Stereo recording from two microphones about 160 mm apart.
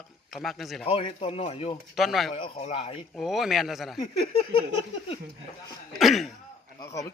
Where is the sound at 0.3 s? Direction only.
Centre (ahead or behind).